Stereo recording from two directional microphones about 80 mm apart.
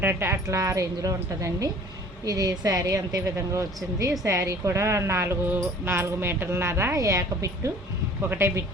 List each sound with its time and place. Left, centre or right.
0.0 s speech: right